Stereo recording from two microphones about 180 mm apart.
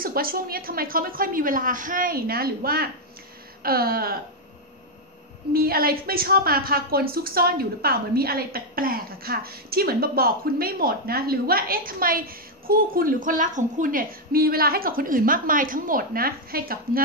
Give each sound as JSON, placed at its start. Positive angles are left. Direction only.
{"t": 0.0, "sound": "a woman's voice", "side_deg": -55}
{"t": 5.5, "sound": "a woman's voice", "side_deg": -55}